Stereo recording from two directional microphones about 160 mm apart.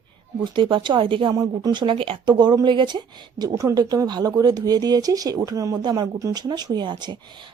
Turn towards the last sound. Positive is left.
turn(degrees=-30)  # may be behind; listen again after turning